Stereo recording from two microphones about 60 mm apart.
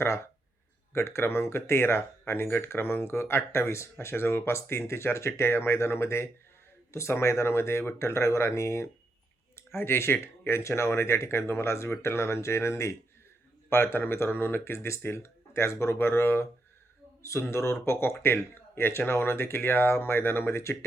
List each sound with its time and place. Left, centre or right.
0.9 s speech: left
9.6 s speech: left
13.7 s speech: left